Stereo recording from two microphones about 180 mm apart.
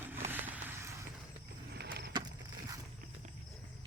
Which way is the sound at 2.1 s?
25° right (ahead or behind).